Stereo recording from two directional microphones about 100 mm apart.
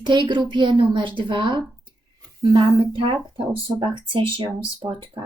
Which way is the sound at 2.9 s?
60° right (ahead or behind).